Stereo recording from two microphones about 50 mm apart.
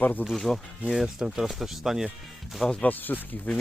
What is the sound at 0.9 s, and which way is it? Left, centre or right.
Speech, centre.